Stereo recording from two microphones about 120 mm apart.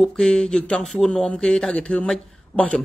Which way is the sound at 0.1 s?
5° left (ahead or behind).